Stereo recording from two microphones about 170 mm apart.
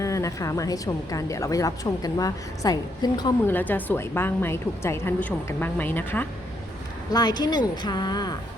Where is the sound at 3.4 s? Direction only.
10° left (ahead or behind).